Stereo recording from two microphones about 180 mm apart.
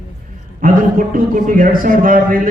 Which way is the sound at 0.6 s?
50° right (ahead or behind).